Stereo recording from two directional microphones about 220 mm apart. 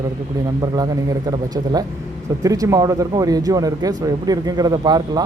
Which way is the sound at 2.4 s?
15° right (ahead or behind).